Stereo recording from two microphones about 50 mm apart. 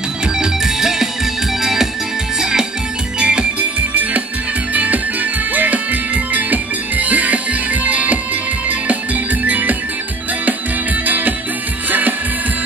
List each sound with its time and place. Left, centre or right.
0.4 s music: centre
3.2 s music: centre
3.9 s music: right
11.1 s music: right